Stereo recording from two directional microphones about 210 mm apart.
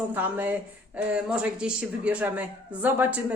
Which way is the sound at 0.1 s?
10° right (ahead or behind).